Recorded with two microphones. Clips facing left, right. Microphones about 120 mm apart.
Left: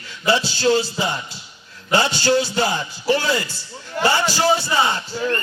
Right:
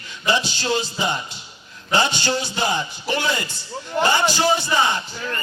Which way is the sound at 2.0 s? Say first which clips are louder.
Left 4 dB; 20° right (ahead or behind).